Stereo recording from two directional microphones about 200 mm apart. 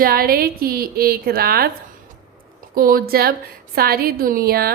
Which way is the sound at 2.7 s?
45° right (ahead or behind).